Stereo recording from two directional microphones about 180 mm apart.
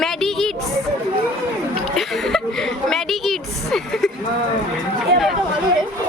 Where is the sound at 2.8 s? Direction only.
Centre (ahead or behind).